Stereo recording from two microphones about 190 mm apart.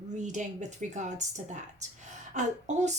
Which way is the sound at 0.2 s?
40° right (ahead or behind).